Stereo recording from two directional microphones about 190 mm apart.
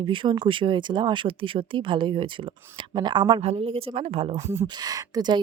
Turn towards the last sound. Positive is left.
turn(degrees=-20)  # may be behind; listen again after turning